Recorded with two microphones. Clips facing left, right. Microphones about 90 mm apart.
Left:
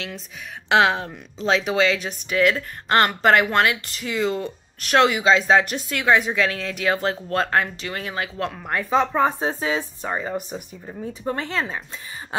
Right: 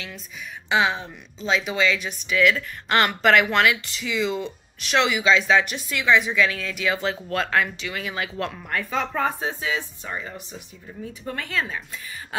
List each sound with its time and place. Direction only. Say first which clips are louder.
0.7 s speech: left 4 dB; 85° left
1.0 s speech: left 5 dB; 70° left (ahead or behind)
2.2 s speech: left 1 dB; 40° left (ahead or behind)
10.3 s speech: left 10 dB; 55° left (ahead or behind)
11.2 s speech: left 3 dB; 30° left (ahead or behind)